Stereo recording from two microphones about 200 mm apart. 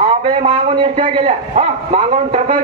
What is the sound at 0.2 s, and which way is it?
A man's voice, 30° right (ahead or behind).